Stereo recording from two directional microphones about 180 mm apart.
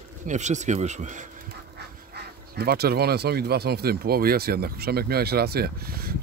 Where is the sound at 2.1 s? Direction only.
60° right (ahead or behind).